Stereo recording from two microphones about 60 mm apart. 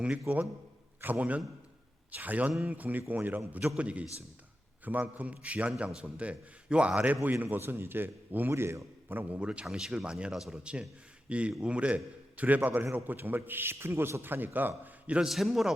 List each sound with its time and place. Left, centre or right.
1.0 s a man's voice: right
3.8 s a man's voice: right
7.5 s a man's voice: right
8.4 s a man's voice: right
9.4 s a man's voice: centre
15.0 s a man's voice: centre
15.3 s a man's voice: centre